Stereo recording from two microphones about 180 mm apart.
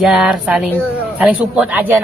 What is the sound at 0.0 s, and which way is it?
A woman's voice, centre (ahead or behind).